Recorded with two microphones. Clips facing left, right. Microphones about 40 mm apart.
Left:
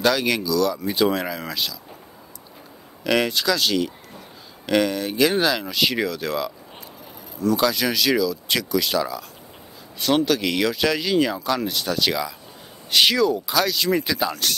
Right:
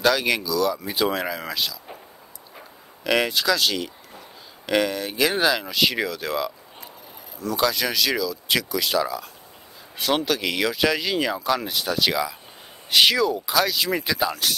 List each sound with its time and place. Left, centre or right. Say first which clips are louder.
0.0 s speech: even; centre
3.0 s speech: left 1 dB; centre